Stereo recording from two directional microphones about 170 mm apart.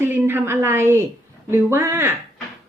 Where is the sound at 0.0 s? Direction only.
15° right (ahead or behind).